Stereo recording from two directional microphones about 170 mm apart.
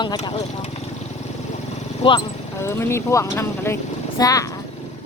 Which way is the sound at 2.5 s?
15° left (ahead or behind).